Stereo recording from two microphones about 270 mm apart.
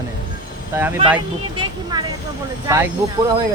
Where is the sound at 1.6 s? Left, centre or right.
Centre.